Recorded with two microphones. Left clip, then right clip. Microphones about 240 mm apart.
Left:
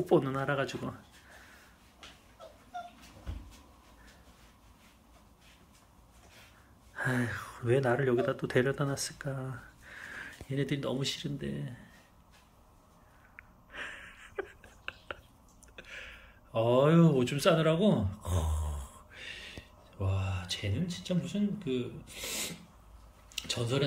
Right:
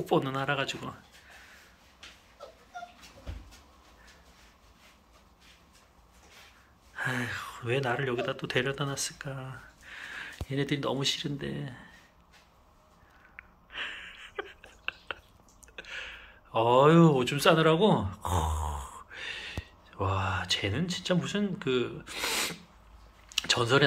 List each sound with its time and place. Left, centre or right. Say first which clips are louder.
0.0 s speech: even; centre
7.0 s speech: right 1 dB; centre
13.4 s a sound: right 5 dB; centre
15.7 s speech: right 6 dB; centre